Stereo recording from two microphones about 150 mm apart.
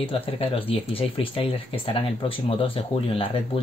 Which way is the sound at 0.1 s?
40° left (ahead or behind).